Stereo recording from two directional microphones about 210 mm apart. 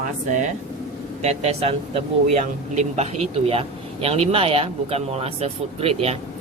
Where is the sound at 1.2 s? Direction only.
30° right (ahead or behind).